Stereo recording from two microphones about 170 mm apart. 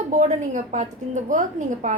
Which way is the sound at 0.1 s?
45° right (ahead or behind).